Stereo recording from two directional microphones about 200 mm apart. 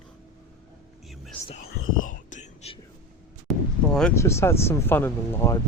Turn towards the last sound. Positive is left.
turn(degrees=10)  # may be behind; listen again after turning